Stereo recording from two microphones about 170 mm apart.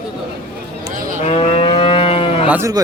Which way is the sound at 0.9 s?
50° right (ahead or behind).